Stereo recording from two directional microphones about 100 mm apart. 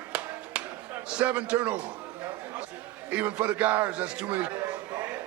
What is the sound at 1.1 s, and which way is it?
Speech, 10° right (ahead or behind).